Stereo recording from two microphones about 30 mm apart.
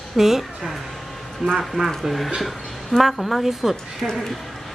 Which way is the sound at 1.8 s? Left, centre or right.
Centre.